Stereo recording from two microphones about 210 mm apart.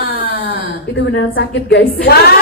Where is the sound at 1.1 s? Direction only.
55° left (ahead or behind).